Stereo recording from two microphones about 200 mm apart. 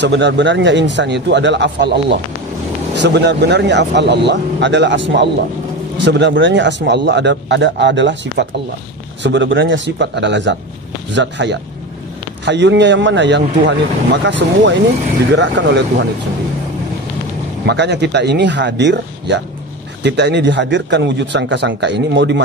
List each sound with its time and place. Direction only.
0.0 s speech: 60° right (ahead or behind)
17.6 s speech: 60° right (ahead or behind)